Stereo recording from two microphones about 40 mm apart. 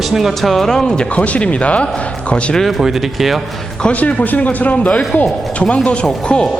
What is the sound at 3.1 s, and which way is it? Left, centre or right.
Speech, centre.